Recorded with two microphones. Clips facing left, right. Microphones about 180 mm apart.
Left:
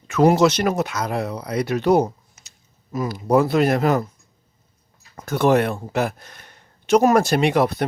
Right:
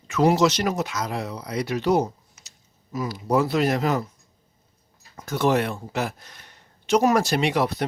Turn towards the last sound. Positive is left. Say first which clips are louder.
# left 4 dB
turn(degrees=55)  # may be behind; listen again after turning